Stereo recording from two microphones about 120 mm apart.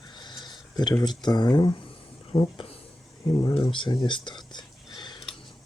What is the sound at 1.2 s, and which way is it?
Speech, 35° left (ahead or behind).